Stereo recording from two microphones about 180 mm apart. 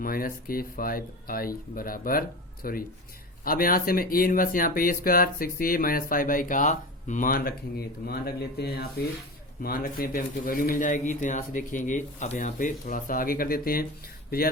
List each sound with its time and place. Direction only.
0.0 s speech: 55° left (ahead or behind)